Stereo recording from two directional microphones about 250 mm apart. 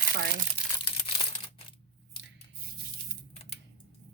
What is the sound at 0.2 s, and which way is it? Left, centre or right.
Speech, right.